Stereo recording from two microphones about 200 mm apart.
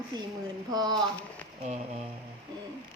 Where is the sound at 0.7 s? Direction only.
20° right (ahead or behind).